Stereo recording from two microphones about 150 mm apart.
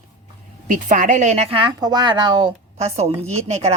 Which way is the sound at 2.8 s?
45° right (ahead or behind).